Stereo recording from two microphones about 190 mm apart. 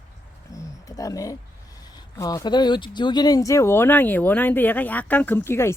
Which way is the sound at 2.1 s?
20° left (ahead or behind).